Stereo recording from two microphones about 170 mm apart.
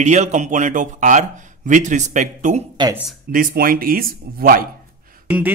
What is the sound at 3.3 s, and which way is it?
A man's voice, 55° right (ahead or behind).